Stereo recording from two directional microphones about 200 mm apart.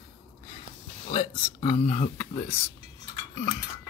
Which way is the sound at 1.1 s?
25° left (ahead or behind).